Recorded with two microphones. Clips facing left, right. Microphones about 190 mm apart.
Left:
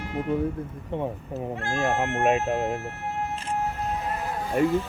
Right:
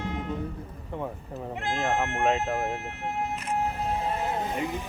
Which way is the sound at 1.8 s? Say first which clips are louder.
Left 2 dB; 15° left (ahead or behind).